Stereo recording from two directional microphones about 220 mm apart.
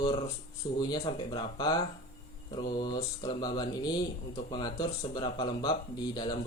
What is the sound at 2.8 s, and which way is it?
Speech, 20° left (ahead or behind).